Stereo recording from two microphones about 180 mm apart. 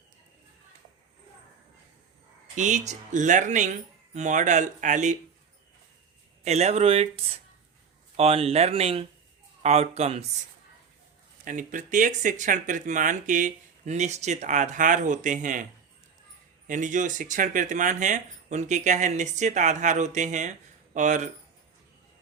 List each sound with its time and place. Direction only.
2.6 s speech: 40° right (ahead or behind)
6.4 s speech: 35° right (ahead or behind)
11.4 s speech: 45° right (ahead or behind)
16.6 s speech: 45° right (ahead or behind)